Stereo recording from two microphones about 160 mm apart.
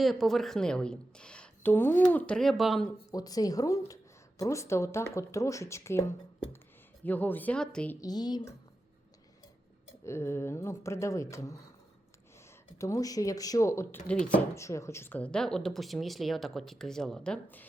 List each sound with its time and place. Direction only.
0.0 s speech: centre (ahead or behind)
3.1 s speech: 25° left (ahead or behind); by 7.9 s 5° left (ahead or behind)
8.0 s speech: 25° left (ahead or behind)
10.0 s speech: 15° left (ahead or behind)
12.8 s speech: 20° left (ahead or behind)